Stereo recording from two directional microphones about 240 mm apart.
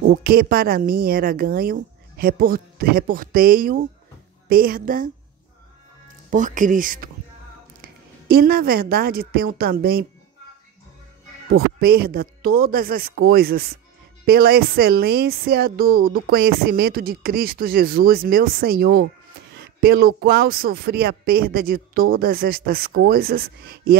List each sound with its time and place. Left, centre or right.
0.0 s speech: right
6.3 s a woman's voice: right
11.5 s speech: right